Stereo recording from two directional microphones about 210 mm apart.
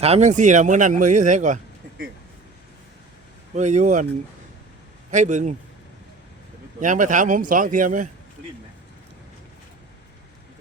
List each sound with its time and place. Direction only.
0.0 s speech: 30° right (ahead or behind)
3.5 s speech: 35° right (ahead or behind)
5.1 s speech: 35° right (ahead or behind)
6.7 s speech: 40° right (ahead or behind)